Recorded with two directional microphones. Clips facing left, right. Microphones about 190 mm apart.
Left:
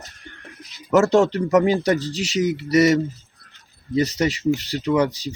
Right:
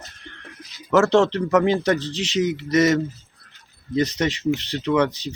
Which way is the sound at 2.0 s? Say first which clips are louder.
Left 1 dB; 35° left (ahead or behind).